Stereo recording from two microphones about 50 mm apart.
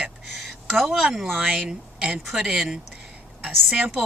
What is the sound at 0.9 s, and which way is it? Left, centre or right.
Speech, centre.